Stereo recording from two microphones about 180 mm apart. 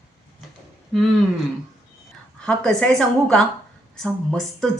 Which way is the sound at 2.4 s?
5° left (ahead or behind).